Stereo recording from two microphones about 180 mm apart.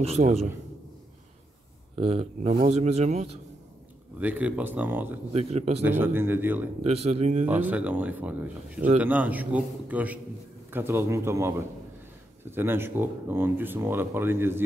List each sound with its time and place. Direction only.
0.0 s speech: 35° right (ahead or behind)
2.0 s speech: 35° right (ahead or behind)
4.2 s speech: 10° right (ahead or behind)
5.3 s speech: 35° right (ahead or behind)
5.9 s speech: 10° right (ahead or behind)
6.8 s speech: 35° right (ahead or behind)
7.4 s speech: 10° right (ahead or behind)